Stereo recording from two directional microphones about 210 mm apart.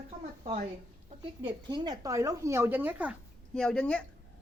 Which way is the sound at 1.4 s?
20° right (ahead or behind).